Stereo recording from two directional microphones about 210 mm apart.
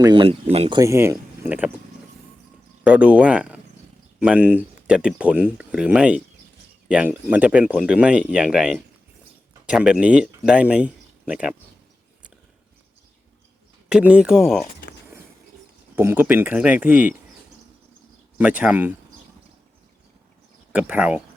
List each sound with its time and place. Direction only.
0.0 s speech: 25° right (ahead or behind)
0.8 s speech: 15° right (ahead or behind)
2.8 s speech: 5° right (ahead or behind)
13.9 s speech: 5° right (ahead or behind)
16.0 s speech: 10° right (ahead or behind)
18.3 s speech: 5° right (ahead or behind)
20.7 s speech: 5° right (ahead or behind)